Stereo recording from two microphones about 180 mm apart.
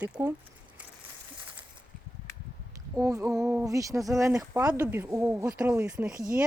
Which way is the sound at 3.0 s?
15° right (ahead or behind).